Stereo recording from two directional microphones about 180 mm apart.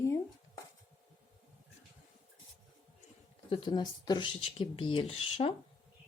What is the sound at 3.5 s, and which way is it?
Speech, 25° left (ahead or behind).